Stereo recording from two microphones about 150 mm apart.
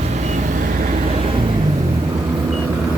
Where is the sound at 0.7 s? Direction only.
60° right (ahead or behind).